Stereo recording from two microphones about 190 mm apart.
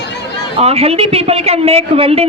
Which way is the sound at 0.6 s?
30° right (ahead or behind).